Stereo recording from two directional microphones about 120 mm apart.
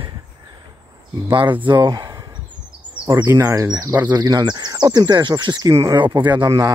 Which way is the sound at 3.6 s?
30° right (ahead or behind).